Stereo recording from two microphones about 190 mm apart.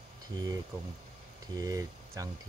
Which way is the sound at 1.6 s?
20° right (ahead or behind).